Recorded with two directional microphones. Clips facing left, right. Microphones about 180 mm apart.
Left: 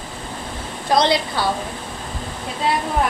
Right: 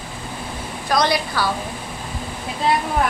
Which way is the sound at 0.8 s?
25° left (ahead or behind).